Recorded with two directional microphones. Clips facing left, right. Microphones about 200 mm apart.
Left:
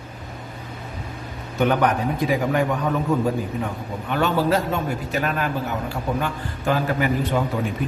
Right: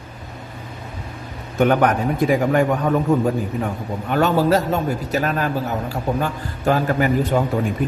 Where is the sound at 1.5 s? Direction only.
50° right (ahead or behind).